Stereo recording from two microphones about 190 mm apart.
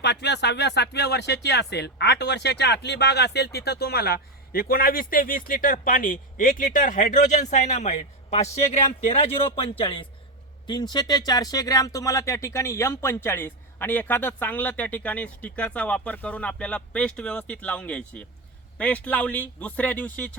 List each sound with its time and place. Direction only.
0.0 s a man's voice: 65° left (ahead or behind); by 20.3 s 10° left (ahead or behind)